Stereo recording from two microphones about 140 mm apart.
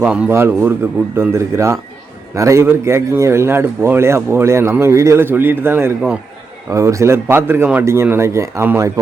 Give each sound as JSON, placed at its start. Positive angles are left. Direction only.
{"t": 0.0, "sound": "a man's voice", "side_deg": -10}